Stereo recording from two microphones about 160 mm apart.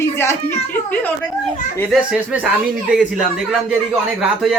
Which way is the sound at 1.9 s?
10° right (ahead or behind).